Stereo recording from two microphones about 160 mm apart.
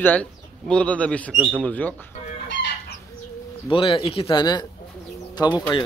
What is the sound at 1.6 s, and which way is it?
Speech, 10° left (ahead or behind).